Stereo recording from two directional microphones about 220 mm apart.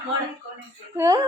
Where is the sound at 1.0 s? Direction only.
15° right (ahead or behind).